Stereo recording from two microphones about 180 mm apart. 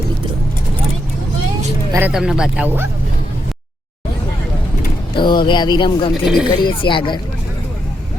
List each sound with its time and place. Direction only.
1.9 s speech: 10° right (ahead or behind)
5.1 s speech: 25° left (ahead or behind)
6.2 s speech: centre (ahead or behind)
6.5 s speech: 25° left (ahead or behind)